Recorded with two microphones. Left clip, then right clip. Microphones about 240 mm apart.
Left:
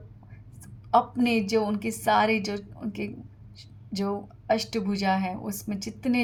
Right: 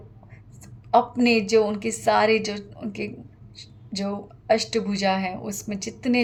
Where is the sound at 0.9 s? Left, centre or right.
Left.